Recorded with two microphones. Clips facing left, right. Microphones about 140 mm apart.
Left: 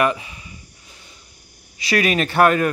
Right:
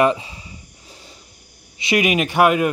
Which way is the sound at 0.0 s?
25° right (ahead or behind).